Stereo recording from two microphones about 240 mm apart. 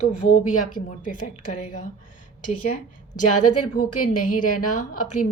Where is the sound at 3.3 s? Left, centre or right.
Left.